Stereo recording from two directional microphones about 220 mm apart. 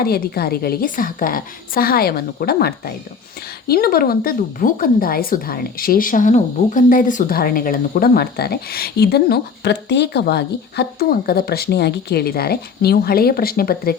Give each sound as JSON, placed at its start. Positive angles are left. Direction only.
{"t": 0.0, "sound": "a woman's voice", "side_deg": 45}